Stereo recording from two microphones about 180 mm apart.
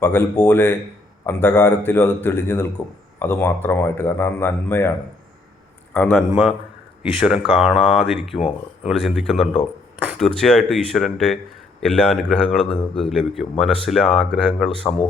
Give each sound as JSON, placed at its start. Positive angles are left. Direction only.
{"t": 0.0, "sound": "a man's voice", "side_deg": 10}
{"t": 6.1, "sound": "a man's voice", "side_deg": -5}
{"t": 8.4, "sound": "speech", "side_deg": 35}
{"t": 8.9, "sound": "a man's voice", "side_deg": 0}